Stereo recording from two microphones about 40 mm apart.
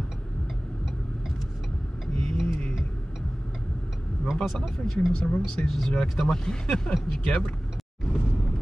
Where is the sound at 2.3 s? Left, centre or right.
Centre.